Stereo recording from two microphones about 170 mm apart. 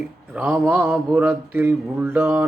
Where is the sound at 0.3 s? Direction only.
5° right (ahead or behind).